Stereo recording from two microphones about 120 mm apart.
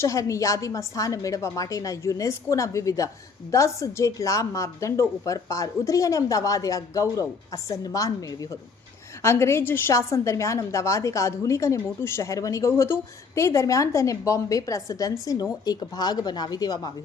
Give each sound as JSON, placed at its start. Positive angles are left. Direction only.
{"t": 0.0, "sound": "a woman's voice", "side_deg": 25}